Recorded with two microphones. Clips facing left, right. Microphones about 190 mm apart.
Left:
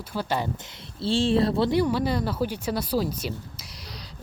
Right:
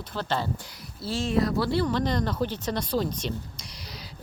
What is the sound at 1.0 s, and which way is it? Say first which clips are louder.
Speech: left 4 dB; 30° left (ahead or behind).